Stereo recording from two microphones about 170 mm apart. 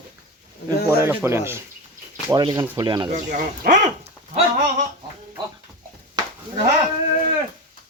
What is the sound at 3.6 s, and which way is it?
Speech, 65° right (ahead or behind).